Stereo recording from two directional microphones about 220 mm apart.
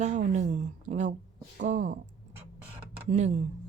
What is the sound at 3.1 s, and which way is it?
Speech, 35° right (ahead or behind).